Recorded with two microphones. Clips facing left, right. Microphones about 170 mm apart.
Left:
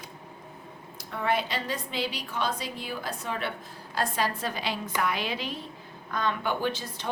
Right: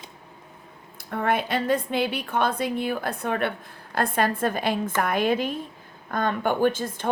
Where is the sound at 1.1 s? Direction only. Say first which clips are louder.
Right 4 dB; 55° right (ahead or behind).